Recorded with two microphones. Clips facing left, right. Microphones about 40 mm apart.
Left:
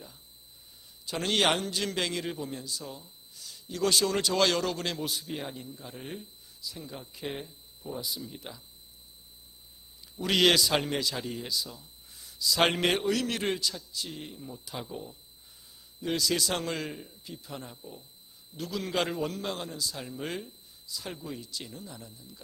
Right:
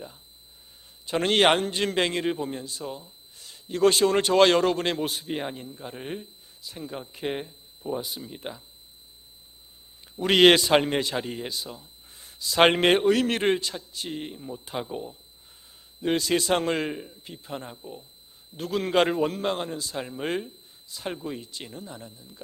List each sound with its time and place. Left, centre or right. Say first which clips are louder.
1.0 s a man's voice: right 6 dB; right
7.4 s a sound: right 7 dB; right
8.0 s a man's voice: right 3 dB; right
10.0 s a man's voice: right 7 dB; right
17.2 s a man's voice: right 4 dB; right
18.5 s a man's voice: right 8 dB; right